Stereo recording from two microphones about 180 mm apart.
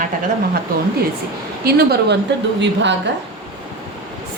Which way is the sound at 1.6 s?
60° right (ahead or behind).